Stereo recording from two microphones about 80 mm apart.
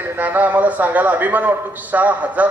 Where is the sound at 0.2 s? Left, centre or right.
Right.